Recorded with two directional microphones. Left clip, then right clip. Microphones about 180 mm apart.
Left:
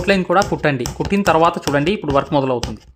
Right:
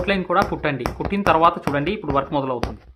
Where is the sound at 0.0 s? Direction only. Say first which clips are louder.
Left 4 dB; 40° left (ahead or behind).